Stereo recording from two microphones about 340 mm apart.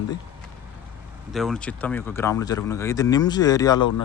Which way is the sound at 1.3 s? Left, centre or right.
Centre.